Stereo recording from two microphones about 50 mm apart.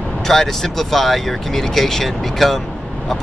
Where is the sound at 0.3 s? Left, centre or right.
Centre.